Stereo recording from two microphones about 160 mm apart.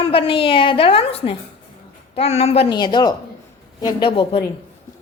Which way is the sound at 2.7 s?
25° left (ahead or behind).